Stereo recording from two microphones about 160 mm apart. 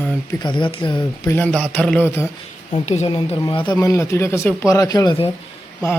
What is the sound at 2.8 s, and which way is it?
Speech, 45° left (ahead or behind).